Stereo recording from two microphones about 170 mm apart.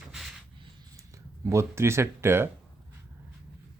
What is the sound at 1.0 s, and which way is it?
Speech, 15° right (ahead or behind).